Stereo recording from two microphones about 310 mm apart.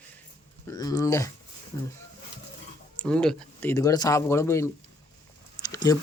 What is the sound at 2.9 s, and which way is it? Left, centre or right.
Speech, centre.